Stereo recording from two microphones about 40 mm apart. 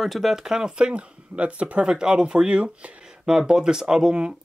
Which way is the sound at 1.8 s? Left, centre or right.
Centre.